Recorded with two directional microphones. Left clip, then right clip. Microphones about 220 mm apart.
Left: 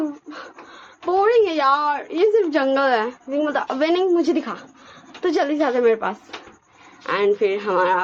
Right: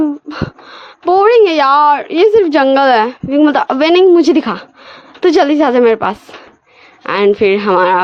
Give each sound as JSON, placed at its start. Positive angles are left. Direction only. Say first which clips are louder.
{"t": 0.3, "sound": "a woman's voice", "louder": "right 12 dB", "side_deg": -50}